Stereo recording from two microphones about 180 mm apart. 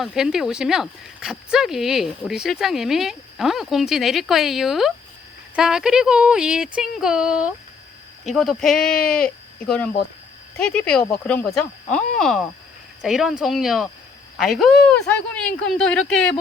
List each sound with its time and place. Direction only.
0.0 s speech: 5° right (ahead or behind)
9.0 s speech: 50° left (ahead or behind)
9.6 s speech: 5° left (ahead or behind)